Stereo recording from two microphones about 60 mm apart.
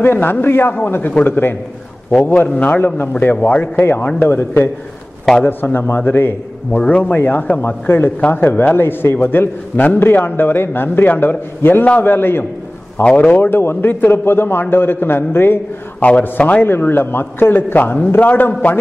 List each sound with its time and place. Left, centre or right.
0.0 s a man's voice: left
6.8 s a man's voice: left
7.6 s a man's voice: left
11.8 s a man's voice: left
12.1 s a man's voice: left
13.0 s speech: centre
13.3 s a man's voice: left
16.0 s a man's voice: left
16.6 s a man's voice: left